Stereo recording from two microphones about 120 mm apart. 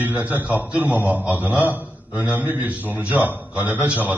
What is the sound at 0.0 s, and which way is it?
A man's voice, 15° right (ahead or behind).